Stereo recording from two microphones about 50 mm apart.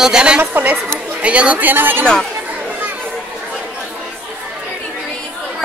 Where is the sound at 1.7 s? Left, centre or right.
Right.